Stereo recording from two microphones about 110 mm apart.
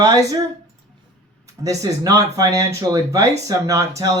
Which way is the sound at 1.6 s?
30° right (ahead or behind).